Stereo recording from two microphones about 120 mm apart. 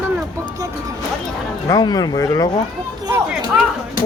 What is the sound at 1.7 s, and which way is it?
Speech, 30° left (ahead or behind).